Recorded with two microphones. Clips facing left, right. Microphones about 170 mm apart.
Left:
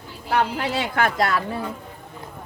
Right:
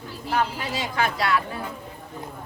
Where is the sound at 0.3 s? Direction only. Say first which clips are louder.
Left 3 dB; 65° left (ahead or behind); by 1.4 s 45° left (ahead or behind).